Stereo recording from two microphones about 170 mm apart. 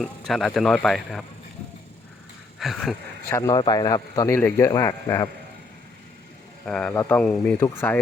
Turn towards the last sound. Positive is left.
turn(degrees=15)  # may be behind; listen again after turning